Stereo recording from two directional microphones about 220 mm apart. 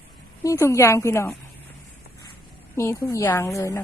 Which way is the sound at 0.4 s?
15° left (ahead or behind).